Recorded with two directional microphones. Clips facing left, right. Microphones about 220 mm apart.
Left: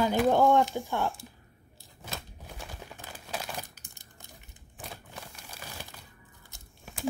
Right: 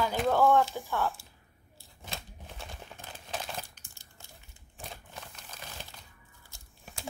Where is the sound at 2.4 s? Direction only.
10° left (ahead or behind).